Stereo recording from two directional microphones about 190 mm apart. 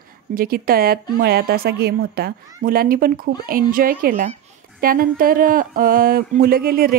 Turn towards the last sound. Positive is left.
turn(degrees=-50)  # may be behind; listen again after turning